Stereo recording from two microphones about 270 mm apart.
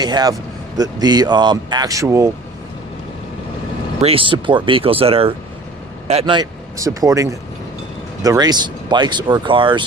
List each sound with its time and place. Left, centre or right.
0.0 s speech: centre
4.0 s speech: centre